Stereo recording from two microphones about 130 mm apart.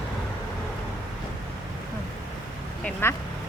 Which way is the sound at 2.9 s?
15° left (ahead or behind).